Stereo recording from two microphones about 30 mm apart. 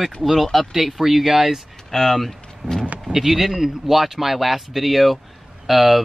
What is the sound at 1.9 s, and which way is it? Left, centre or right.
Speech, centre.